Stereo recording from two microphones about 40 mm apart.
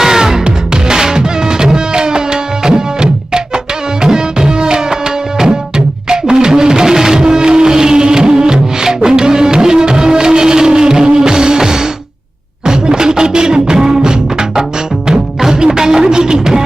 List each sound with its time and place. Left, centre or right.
0.0 s music: centre
4.0 s tabla: centre
6.1 s music: centre